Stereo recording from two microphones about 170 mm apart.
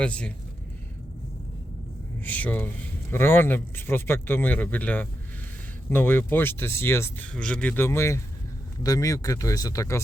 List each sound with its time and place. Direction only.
0.0 s speech: 5° left (ahead or behind)
2.2 s speech: 10° left (ahead or behind)